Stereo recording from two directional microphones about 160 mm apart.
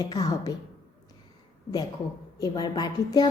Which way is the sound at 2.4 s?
25° left (ahead or behind).